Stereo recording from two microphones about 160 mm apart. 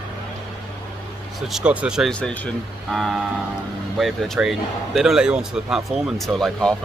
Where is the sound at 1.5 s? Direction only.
5° right (ahead or behind).